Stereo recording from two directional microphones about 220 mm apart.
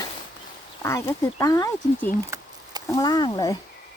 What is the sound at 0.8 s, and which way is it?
Speech, 10° left (ahead or behind).